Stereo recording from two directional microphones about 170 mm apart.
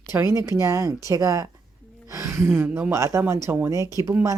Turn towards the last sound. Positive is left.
turn(degrees=-15)  # may be behind; listen again after turning